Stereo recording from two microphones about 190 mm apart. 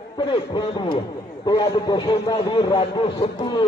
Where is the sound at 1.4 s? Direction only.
20° left (ahead or behind).